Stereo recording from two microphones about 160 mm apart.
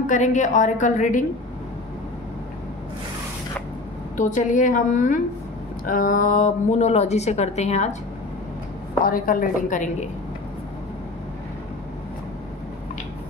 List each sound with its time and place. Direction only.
0.0 s speech: 50° left (ahead or behind)
4.2 s speech: 55° left (ahead or behind)
9.0 s a woman's voice: 65° left (ahead or behind)